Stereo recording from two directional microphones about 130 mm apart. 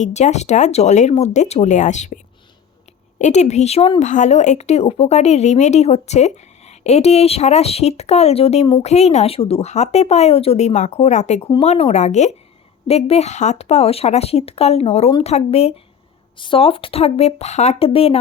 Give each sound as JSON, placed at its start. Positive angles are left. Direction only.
{"t": 0.0, "sound": "speech", "side_deg": 60}
{"t": 3.2, "sound": "speech", "side_deg": 65}
{"t": 4.0, "sound": "speech", "side_deg": 70}